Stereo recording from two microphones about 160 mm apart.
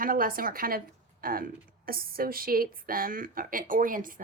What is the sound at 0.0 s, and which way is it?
Speech, 60° right (ahead or behind).